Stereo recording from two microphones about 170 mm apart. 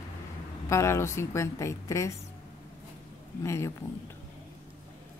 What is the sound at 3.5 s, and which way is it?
Speech, 15° left (ahead or behind).